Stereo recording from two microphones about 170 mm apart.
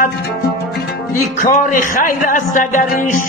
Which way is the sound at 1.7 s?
50° left (ahead or behind).